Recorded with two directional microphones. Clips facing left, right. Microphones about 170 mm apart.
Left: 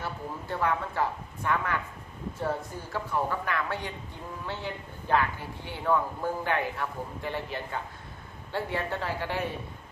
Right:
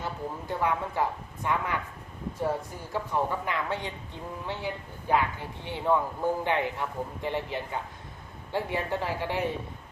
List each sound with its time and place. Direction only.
0.0 s speech: 15° right (ahead or behind)